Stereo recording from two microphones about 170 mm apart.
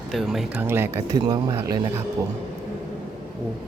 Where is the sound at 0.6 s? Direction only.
15° right (ahead or behind).